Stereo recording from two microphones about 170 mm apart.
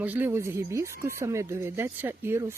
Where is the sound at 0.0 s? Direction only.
10° right (ahead or behind).